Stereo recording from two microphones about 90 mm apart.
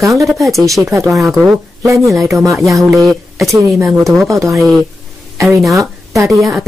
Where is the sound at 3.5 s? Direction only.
35° right (ahead or behind).